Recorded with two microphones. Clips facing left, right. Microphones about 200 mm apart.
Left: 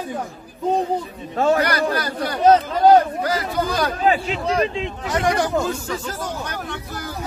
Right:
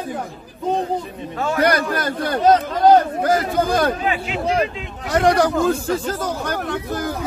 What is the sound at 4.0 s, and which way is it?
Speech, 35° left (ahead or behind).